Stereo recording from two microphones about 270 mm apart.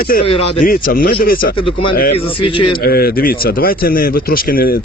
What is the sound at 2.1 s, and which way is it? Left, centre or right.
Speech, centre.